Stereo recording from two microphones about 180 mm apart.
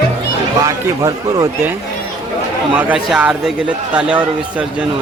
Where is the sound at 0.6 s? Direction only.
20° right (ahead or behind).